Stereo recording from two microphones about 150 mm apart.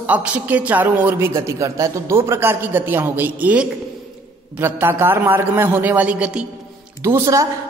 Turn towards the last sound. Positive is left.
turn(degrees=-20)  # may be behind; listen again after turning